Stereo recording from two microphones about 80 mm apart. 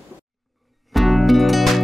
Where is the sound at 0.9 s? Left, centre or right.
Centre.